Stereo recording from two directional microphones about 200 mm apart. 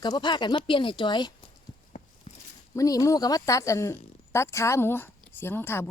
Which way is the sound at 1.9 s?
40° left (ahead or behind).